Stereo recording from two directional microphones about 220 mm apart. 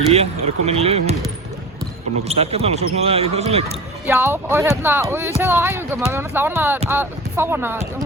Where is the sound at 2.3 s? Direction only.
25° right (ahead or behind).